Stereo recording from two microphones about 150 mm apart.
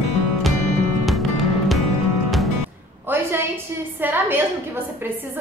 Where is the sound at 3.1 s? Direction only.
15° right (ahead or behind).